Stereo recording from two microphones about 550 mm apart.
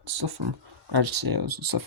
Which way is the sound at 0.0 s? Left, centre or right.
Right.